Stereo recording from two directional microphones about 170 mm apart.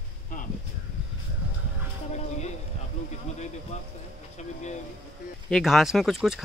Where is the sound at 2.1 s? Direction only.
40° left (ahead or behind).